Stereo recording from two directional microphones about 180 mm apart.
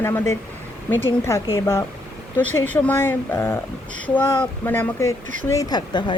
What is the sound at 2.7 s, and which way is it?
Speech, 10° left (ahead or behind).